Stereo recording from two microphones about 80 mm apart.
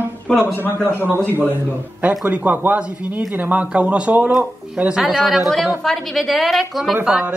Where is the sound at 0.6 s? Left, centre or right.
Left.